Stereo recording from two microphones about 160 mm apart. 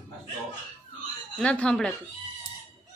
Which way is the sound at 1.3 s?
5° left (ahead or behind).